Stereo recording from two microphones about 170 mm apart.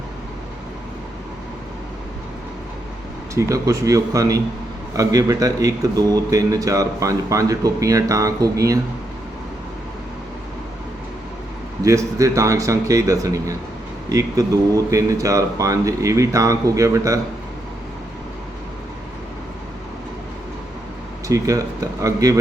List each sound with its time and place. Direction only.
3.3 s a man's voice: 20° right (ahead or behind)
11.8 s a man's voice: 20° right (ahead or behind)
21.2 s a man's voice: 20° right (ahead or behind)